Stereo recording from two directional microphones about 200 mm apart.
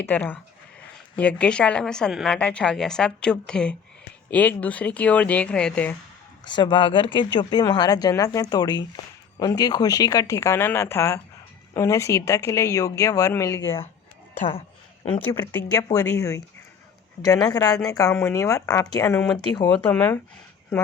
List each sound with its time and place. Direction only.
0.0 s a woman's voice: 10° left (ahead or behind)
6.4 s speech: 20° left (ahead or behind)
15.2 s speech: 10° left (ahead or behind)